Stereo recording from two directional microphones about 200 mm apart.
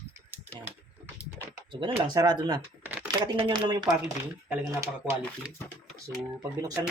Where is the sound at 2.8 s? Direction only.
10° right (ahead or behind).